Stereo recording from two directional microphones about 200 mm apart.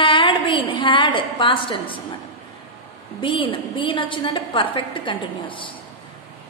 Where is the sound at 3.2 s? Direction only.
25° left (ahead or behind).